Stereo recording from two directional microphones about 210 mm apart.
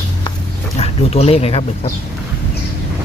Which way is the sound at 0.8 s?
30° left (ahead or behind).